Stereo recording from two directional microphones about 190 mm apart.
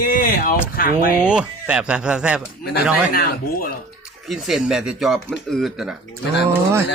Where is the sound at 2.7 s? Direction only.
50° left (ahead or behind).